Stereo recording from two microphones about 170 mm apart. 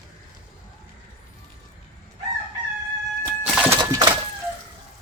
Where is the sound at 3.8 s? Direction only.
25° right (ahead or behind).